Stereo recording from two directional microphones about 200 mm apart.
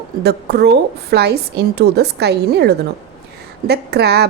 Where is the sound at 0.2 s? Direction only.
55° right (ahead or behind).